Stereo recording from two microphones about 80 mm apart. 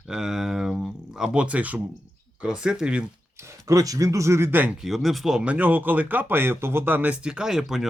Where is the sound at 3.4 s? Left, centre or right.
Right.